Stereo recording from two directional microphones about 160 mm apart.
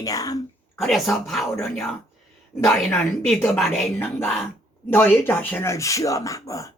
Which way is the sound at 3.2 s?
5° left (ahead or behind).